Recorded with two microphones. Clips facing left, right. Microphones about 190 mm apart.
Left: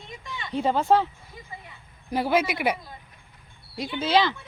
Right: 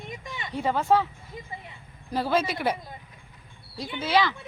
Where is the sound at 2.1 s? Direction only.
15° left (ahead or behind).